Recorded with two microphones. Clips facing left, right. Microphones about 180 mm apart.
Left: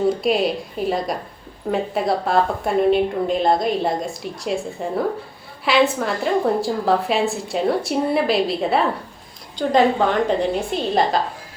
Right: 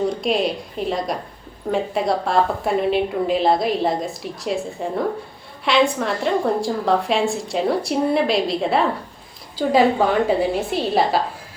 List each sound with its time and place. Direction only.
0.1 s a woman's voice: centre (ahead or behind)